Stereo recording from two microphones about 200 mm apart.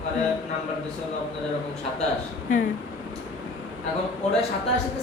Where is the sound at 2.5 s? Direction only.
40° left (ahead or behind).